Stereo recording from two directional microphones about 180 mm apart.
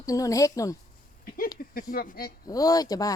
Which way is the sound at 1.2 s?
50° left (ahead or behind).